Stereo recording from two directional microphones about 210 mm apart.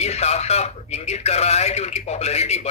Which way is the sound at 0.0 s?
30° left (ahead or behind).